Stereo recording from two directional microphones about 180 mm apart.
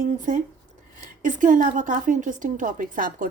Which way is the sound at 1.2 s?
45° right (ahead or behind).